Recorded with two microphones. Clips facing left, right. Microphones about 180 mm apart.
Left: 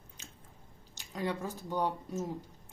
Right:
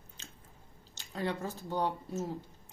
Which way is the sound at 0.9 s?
10° left (ahead or behind).